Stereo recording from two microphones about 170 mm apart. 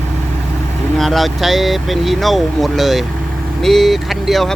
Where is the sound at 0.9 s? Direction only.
Centre (ahead or behind).